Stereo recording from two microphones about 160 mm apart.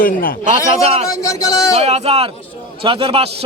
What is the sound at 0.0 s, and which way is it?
Speech, 65° left (ahead or behind).